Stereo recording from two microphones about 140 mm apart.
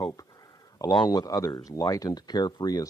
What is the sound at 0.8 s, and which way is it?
Speech, 25° left (ahead or behind).